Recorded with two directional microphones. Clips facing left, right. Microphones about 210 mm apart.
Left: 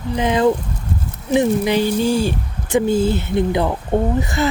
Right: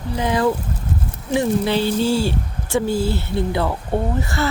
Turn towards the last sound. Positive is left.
turn(degrees=20)  # may be behind; listen again after turning